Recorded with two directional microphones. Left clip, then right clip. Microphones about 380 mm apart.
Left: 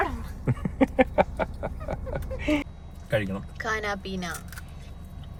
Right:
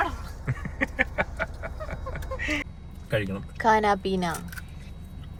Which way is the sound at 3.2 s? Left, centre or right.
Centre.